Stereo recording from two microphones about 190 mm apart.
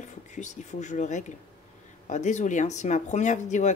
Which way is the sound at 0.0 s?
40° left (ahead or behind).